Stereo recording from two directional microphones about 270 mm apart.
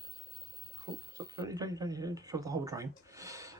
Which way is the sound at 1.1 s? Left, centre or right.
Centre.